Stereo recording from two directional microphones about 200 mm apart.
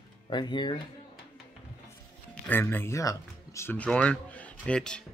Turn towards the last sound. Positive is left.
turn(degrees=5)  # may be behind; listen again after turning